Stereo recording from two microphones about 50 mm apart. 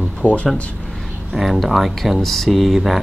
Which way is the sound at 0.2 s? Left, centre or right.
Left.